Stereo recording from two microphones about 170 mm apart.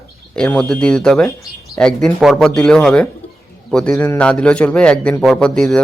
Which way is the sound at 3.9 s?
15° left (ahead or behind).